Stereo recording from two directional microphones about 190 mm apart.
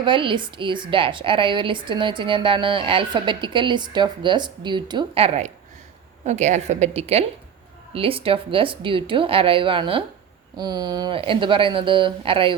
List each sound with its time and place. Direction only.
0.0 s a woman's voice: 25° right (ahead or behind)